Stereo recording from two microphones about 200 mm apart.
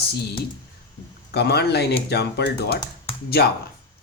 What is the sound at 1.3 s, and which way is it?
Speech, 55° left (ahead or behind).